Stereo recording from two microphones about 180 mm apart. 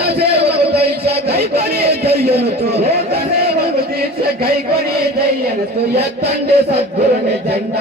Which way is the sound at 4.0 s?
60° right (ahead or behind).